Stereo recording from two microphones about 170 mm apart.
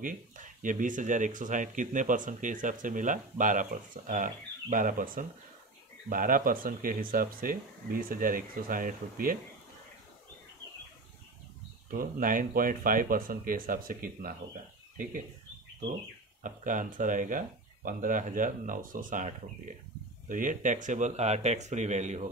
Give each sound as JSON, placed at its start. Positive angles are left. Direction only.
{"t": 0.0, "sound": "speech", "side_deg": -50}
{"t": 12.0, "sound": "speech", "side_deg": -55}
{"t": 16.4, "sound": "speech", "side_deg": -50}